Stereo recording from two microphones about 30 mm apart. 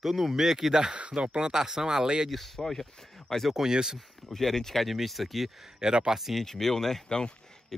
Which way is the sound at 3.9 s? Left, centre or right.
Centre.